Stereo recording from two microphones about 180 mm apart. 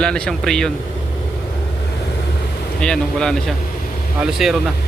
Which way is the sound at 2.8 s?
5° left (ahead or behind).